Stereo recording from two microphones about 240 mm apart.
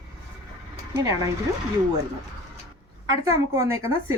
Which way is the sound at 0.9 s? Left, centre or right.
Centre.